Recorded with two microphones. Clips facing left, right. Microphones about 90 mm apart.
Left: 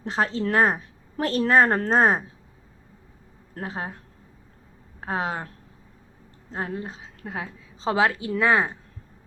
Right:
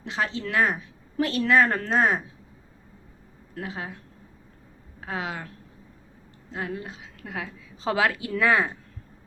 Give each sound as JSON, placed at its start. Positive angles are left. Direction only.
{"t": 0.0, "sound": "a woman's voice", "side_deg": 40}
{"t": 3.5, "sound": "speech", "side_deg": 35}
{"t": 4.9, "sound": "speech", "side_deg": 35}
{"t": 6.5, "sound": "a woman's voice", "side_deg": 35}